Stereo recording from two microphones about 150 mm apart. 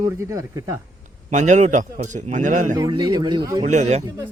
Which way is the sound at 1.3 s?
55° right (ahead or behind).